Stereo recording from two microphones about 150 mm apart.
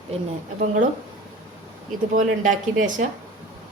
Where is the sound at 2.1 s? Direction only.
60° right (ahead or behind).